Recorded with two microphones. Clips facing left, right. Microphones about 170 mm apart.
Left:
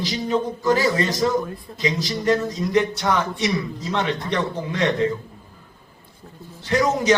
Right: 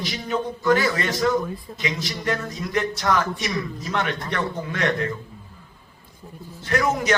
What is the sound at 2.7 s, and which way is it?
A man's voice, 15° left (ahead or behind).